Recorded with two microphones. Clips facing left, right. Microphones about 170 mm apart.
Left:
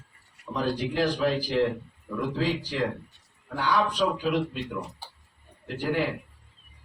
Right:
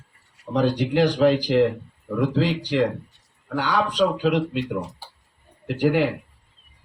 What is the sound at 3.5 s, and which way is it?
Speech, 75° right (ahead or behind).